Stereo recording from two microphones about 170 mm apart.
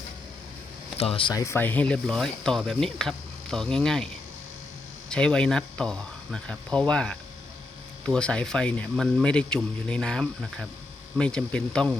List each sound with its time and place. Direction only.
0.9 s speech: 35° left (ahead or behind)
1.3 s speech: 20° left (ahead or behind)